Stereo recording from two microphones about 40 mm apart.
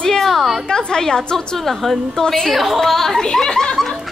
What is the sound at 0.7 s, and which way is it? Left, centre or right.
Speech, centre.